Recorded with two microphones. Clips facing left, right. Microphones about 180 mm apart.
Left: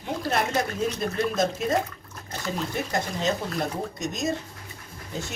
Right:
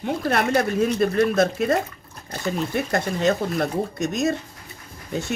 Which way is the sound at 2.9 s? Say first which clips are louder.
Right 6 dB; 60° right (ahead or behind).